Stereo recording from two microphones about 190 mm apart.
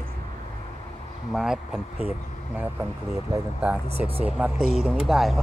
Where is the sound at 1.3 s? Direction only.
Centre (ahead or behind).